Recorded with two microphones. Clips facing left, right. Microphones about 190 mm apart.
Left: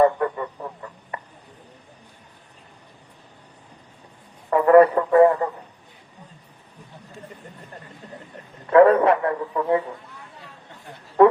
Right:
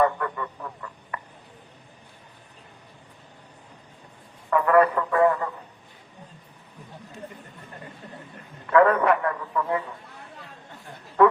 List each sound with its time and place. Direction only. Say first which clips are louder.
0.0 s a sound: left 5 dB; 25° left (ahead or behind)
4.4 s a man's voice: left 6 dB; 30° left (ahead or behind)
8.7 s a man's voice: left 5 dB; 25° left (ahead or behind)